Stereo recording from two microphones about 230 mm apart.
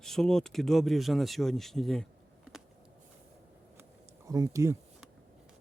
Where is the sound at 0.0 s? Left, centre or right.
Centre.